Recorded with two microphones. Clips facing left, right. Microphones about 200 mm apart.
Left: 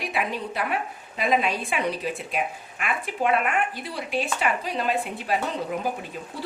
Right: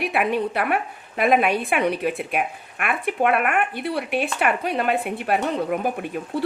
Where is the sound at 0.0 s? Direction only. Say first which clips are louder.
Right 7 dB; 60° right (ahead or behind).